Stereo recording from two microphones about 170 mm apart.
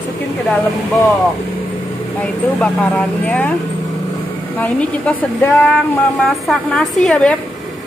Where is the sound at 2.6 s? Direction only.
5° left (ahead or behind).